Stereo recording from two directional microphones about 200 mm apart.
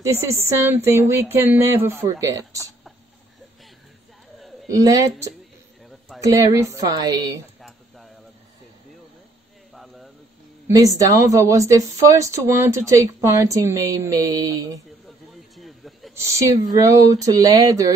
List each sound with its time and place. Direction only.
0.0 s speech: 15° right (ahead or behind)
4.6 s speech: 15° right (ahead or behind)
11.0 s speech: 15° right (ahead or behind)
15.0 s a sound: centre (ahead or behind)
16.2 s speech: 15° right (ahead or behind)